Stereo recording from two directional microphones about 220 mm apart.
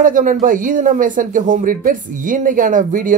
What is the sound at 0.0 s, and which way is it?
Speech, 35° right (ahead or behind).